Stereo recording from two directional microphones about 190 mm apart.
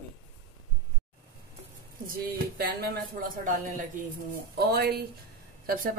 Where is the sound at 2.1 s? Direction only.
55° right (ahead or behind).